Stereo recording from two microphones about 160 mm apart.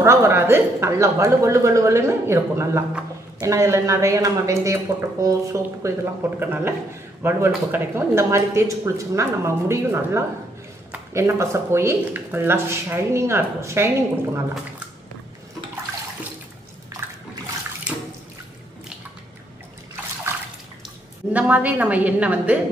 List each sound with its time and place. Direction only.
0.0 s speech: 15° right (ahead or behind)
21.3 s speech: 10° right (ahead or behind)